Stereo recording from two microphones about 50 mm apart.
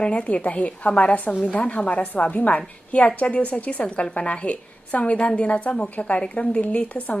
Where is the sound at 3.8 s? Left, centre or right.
Left.